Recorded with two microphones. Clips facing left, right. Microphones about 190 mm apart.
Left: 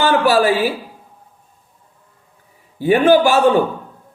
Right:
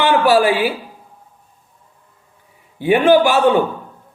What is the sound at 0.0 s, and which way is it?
Speech, 40° left (ahead or behind).